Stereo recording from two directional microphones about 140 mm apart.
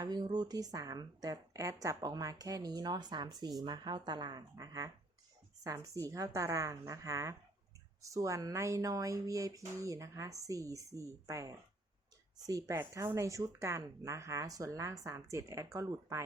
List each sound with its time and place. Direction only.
0.0 s speech: 30° right (ahead or behind)